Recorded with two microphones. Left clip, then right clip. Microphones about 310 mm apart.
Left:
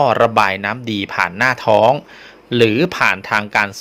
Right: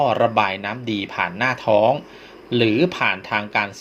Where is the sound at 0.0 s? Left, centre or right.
Left.